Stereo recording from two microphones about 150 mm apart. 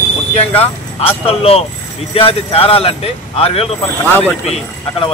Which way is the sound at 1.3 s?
40° left (ahead or behind).